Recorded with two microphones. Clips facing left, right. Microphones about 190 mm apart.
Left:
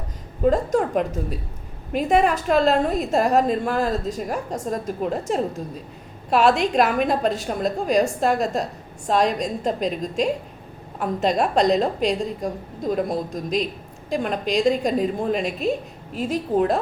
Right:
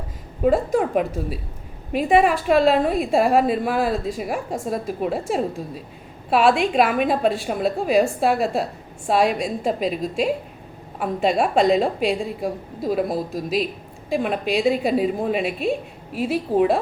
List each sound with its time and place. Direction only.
0.4 s a woman's voice: 5° right (ahead or behind)